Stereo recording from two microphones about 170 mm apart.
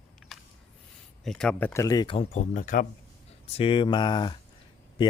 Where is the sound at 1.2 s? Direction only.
5° left (ahead or behind); by 2.2 s 25° left (ahead or behind).